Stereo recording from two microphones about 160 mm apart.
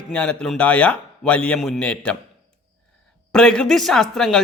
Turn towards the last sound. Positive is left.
turn(degrees=0)  # may be behind; listen again after turning